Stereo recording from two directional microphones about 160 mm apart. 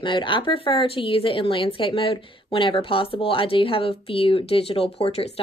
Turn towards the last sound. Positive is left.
turn(degrees=40)  # may be behind; listen again after turning